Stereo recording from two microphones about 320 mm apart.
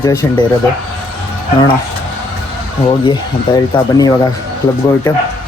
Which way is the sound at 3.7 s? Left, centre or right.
Centre.